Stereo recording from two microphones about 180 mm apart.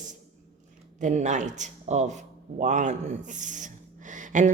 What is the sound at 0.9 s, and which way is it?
Speech, 40° right (ahead or behind).